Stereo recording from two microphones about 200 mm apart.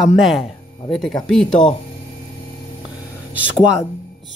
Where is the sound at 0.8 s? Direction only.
25° left (ahead or behind).